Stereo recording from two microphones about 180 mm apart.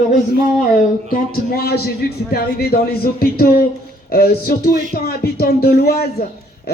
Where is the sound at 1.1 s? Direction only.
60° left (ahead or behind).